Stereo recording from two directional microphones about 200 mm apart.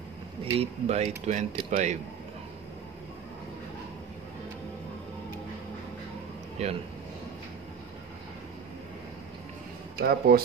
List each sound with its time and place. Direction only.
0.6 s speech: 35° right (ahead or behind)
6.6 s speech: 35° right (ahead or behind)
9.9 s speech: 50° right (ahead or behind)